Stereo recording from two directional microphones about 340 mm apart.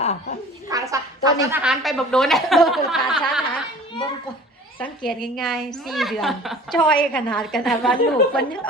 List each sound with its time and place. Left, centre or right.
0.0 s a sound: centre
0.7 s a woman's voice: centre
4.8 s a woman's voice: centre